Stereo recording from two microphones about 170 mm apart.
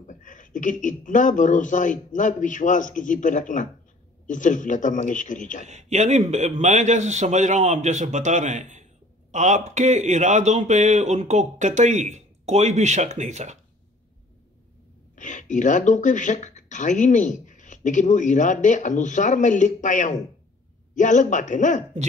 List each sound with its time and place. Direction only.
0.0 s speech: 50° left (ahead or behind)
5.7 s speech: 40° right (ahead or behind)
15.1 s speech: 45° left (ahead or behind)